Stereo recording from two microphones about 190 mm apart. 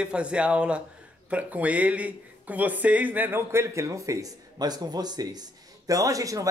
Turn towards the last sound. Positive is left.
turn(degrees=-15)  # may be behind; listen again after turning